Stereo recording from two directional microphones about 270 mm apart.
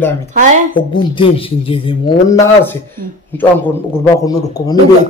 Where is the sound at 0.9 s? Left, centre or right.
Centre.